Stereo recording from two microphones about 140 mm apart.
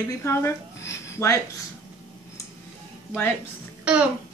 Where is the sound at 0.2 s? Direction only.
20° left (ahead or behind).